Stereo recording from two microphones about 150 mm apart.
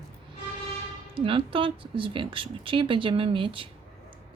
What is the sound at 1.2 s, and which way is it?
A woman's voice, 35° right (ahead or behind).